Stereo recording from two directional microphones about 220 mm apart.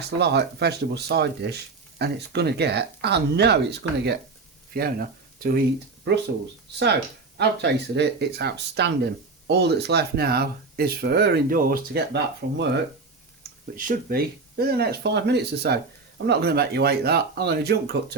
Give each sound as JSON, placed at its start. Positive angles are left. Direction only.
{"t": 0.2, "sound": "speech", "side_deg": -50}
{"t": 13.7, "sound": "speech", "side_deg": -40}